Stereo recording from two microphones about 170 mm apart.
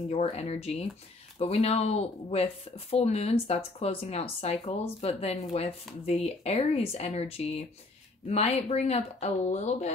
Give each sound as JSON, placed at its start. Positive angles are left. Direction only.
{"t": 0.1, "sound": "speech", "side_deg": 40}